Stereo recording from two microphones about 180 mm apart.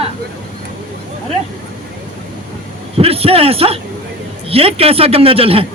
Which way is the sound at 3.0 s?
30° right (ahead or behind).